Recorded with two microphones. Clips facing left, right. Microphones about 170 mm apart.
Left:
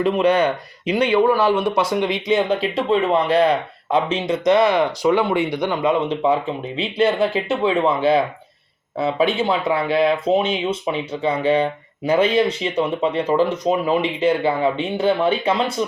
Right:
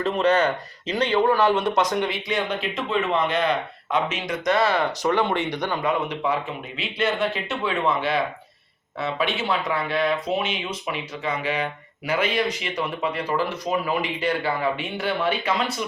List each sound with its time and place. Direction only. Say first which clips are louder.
0.0 s speech: left 4 dB; 10° left (ahead or behind); by 15.7 s 30° left (ahead or behind)